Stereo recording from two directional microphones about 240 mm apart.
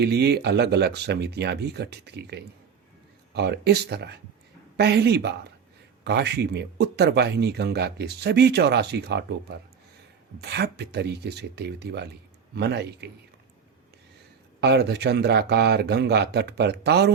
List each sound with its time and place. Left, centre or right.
0.0 s speech: right
14.6 s speech: right